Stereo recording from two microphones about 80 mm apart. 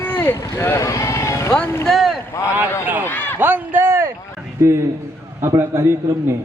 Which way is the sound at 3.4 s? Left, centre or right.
Right.